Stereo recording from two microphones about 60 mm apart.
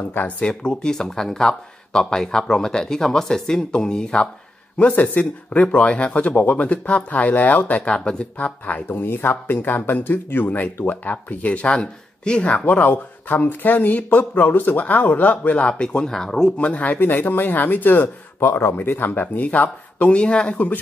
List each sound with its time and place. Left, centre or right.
0.1 s speech: left
0.5 s speech: centre
8.8 s speech: left
18.4 s speech: left